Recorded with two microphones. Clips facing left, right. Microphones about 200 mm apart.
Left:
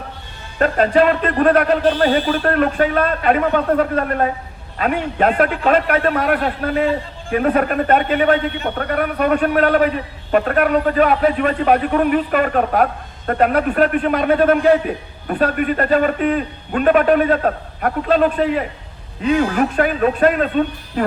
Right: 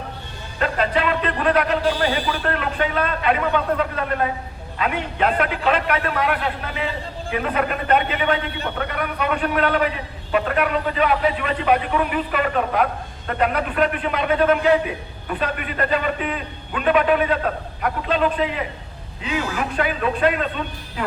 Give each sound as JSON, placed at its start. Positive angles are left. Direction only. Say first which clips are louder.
{"t": 0.6, "sound": "a man's voice", "louder": "left 7 dB", "side_deg": 45}